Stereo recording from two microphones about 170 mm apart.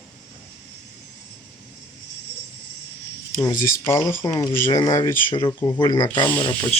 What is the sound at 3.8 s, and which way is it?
Speech, 15° left (ahead or behind).